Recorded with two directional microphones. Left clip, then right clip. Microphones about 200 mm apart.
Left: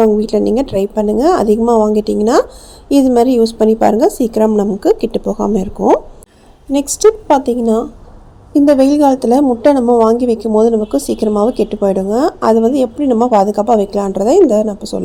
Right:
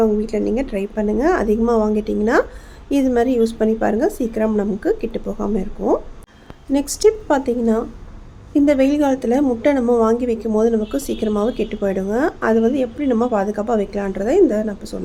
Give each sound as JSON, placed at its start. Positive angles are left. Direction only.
{"t": 0.2, "sound": "speech", "side_deg": 25}
{"t": 6.7, "sound": "a woman's voice", "side_deg": 15}